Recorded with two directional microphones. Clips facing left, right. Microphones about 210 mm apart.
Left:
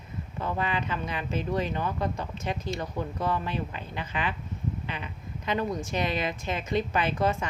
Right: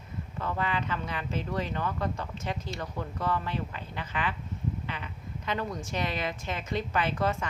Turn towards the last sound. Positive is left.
turn(degrees=15)  # may be behind; listen again after turning